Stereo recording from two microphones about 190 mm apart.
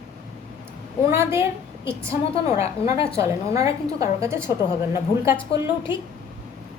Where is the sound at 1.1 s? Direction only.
15° right (ahead or behind).